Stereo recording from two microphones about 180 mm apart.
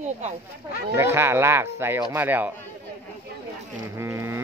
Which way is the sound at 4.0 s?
15° right (ahead or behind).